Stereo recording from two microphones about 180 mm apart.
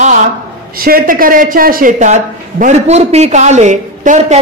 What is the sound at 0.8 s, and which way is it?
A man's voice, 55° right (ahead or behind).